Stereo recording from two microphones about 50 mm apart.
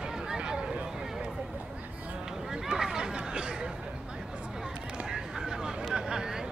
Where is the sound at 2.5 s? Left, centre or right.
Centre.